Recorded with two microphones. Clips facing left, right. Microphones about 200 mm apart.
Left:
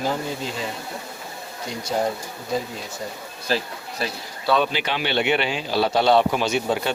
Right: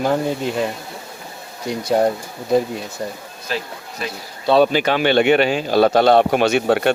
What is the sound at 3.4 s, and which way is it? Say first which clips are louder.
Insect: left 1 dB; 35° left (ahead or behind).